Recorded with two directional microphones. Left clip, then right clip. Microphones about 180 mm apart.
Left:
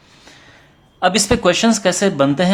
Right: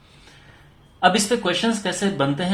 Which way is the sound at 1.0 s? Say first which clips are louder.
Left 3 dB; 55° left (ahead or behind).